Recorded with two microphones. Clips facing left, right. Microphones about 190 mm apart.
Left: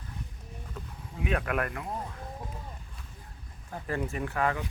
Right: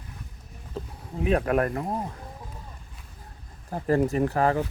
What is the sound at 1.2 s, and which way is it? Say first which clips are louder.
Speech: right 7 dB; 35° right (ahead or behind).